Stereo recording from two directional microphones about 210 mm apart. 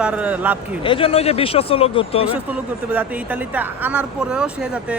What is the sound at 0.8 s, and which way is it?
Speech, 25° left (ahead or behind).